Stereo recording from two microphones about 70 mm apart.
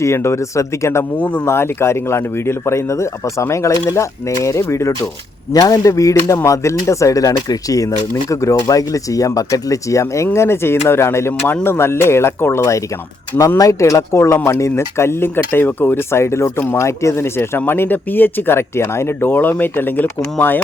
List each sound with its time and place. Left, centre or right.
0.0 s speech: left
5.5 s speech: left
8.6 s speech: left